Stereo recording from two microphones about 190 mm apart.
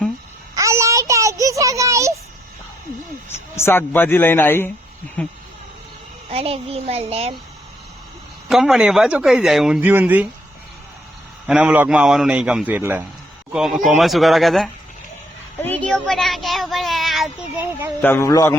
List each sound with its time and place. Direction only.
0.5 s a sound: 15° right (ahead or behind)
3.2 s a man's voice: 15° left (ahead or behind)
6.3 s a child's voice: 30° right (ahead or behind)
8.4 s speech: centre (ahead or behind)
11.4 s a man's voice: 5° right (ahead or behind)
18.0 s a man's voice: 15° left (ahead or behind)